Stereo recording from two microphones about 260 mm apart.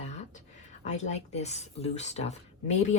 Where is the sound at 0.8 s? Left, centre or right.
Left.